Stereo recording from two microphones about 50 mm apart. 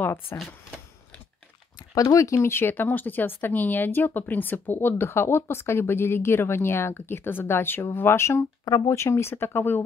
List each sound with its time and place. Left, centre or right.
0.0 s speech: left
2.2 s speech: left
2.5 s speech: left
8.8 s speech: left